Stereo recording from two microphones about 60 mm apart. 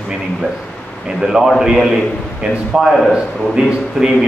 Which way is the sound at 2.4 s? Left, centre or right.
Right.